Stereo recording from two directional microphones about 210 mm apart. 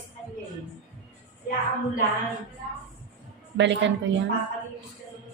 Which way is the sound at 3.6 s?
60° right (ahead or behind).